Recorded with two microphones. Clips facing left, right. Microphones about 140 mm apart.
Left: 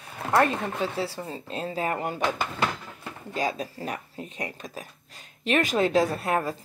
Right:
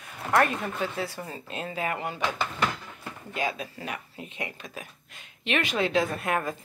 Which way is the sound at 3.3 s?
35° left (ahead or behind).